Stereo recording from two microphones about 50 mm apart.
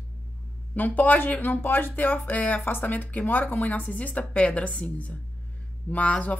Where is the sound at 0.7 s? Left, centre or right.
Left.